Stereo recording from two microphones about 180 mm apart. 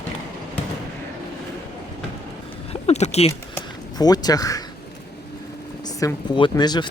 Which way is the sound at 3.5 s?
20° left (ahead or behind).